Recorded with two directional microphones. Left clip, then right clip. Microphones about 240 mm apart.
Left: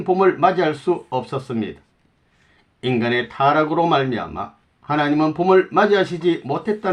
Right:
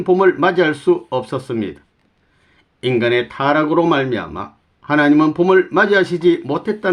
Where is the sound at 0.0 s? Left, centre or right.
Right.